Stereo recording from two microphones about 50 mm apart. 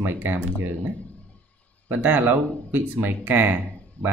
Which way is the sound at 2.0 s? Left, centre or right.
Right.